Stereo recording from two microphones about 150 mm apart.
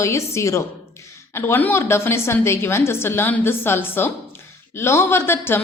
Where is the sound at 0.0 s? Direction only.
20° left (ahead or behind).